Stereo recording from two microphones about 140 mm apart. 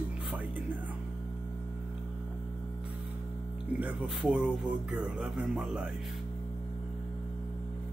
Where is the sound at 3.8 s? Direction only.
10° right (ahead or behind).